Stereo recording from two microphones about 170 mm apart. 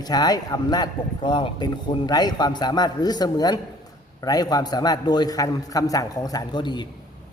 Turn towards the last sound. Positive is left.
turn(degrees=25)  # may be behind; listen again after turning